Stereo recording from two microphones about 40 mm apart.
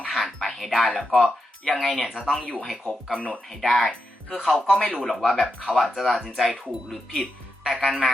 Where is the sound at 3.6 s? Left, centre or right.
Centre.